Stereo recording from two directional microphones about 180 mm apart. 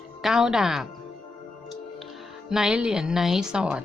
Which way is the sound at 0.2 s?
Centre (ahead or behind).